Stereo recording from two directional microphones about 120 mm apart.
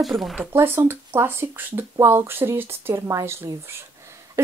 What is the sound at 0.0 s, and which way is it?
Speech, centre (ahead or behind).